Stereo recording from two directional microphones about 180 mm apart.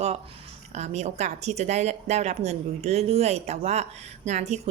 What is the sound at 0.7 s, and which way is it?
A woman's voice, 40° right (ahead or behind).